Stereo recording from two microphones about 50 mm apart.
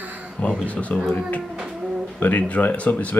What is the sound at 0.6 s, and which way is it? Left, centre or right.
Speech, left.